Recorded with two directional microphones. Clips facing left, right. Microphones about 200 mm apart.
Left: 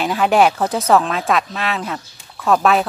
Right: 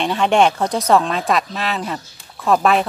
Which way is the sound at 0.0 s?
5° left (ahead or behind).